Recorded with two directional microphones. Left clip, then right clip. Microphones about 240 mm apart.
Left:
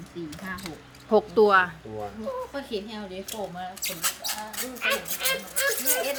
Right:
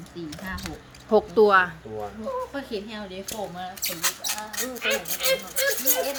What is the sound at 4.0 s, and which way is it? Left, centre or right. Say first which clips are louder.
Speech: right 3 dB; centre.